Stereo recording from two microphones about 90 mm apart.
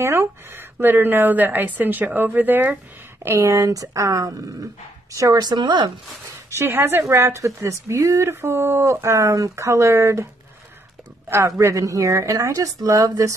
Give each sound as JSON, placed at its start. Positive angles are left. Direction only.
{"t": 0.0, "sound": "a woman's voice", "side_deg": -30}
{"t": 3.3, "sound": "a woman's voice", "side_deg": -35}
{"t": 5.6, "sound": "speech", "side_deg": -60}
{"t": 6.5, "sound": "a woman's voice", "side_deg": -30}
{"t": 11.2, "sound": "a woman's voice", "side_deg": -25}